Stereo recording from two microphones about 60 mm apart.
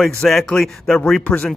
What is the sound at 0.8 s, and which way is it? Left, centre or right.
Speech, left.